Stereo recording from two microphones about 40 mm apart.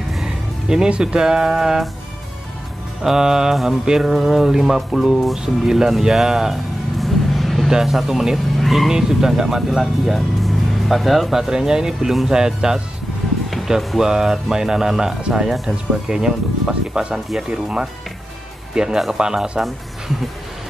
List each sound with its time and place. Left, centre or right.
0.2 s music: centre
0.8 s speech: right
3.0 s speech: centre
3.6 s music: centre
7.7 s speech: centre
8.9 s speech: centre
18.9 s speech: centre
19.6 s music: centre